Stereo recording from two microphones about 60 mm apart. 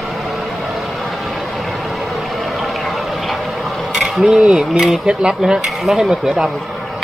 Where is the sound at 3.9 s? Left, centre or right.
Centre.